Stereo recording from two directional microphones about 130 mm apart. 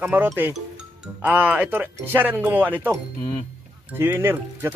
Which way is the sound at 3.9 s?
20° right (ahead or behind).